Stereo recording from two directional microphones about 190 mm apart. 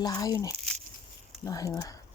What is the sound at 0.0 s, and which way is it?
Speech, 20° left (ahead or behind).